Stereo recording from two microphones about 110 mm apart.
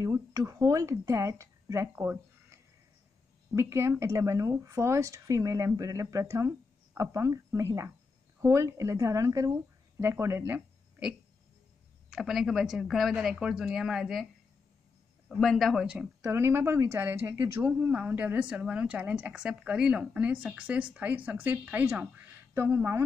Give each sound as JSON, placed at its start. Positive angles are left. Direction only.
{"t": 0.0, "sound": "speech", "side_deg": -35}
{"t": 3.5, "sound": "speech", "side_deg": -25}
{"t": 12.1, "sound": "speech", "side_deg": 0}
{"t": 15.2, "sound": "speech", "side_deg": 5}
{"t": 16.2, "sound": "speech", "side_deg": -25}
{"t": 17.7, "sound": "a woman's voice", "side_deg": -15}